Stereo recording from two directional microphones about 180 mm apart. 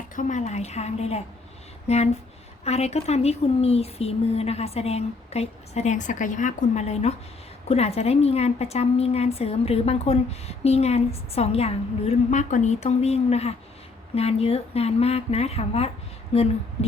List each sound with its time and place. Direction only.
0.2 s speech: 40° left (ahead or behind)